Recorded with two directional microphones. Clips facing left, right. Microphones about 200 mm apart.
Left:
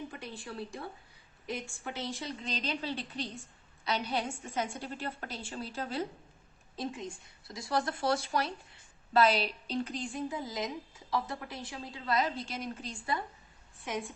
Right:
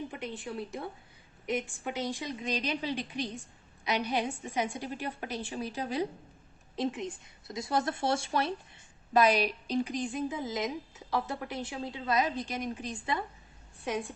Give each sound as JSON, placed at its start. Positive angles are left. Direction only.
{"t": 0.2, "sound": "a woman's voice", "side_deg": -20}
{"t": 9.1, "sound": "a woman's voice", "side_deg": -15}